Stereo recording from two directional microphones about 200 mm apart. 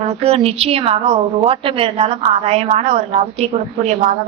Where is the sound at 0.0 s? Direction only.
30° right (ahead or behind).